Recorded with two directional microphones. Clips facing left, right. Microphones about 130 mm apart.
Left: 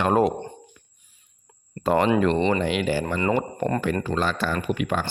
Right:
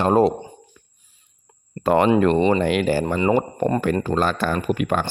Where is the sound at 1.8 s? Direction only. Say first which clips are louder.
Right 3 dB; 60° right (ahead or behind).